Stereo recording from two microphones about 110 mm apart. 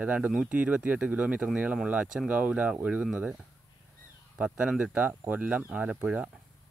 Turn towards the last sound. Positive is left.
turn(degrees=-10)  # may be behind; listen again after turning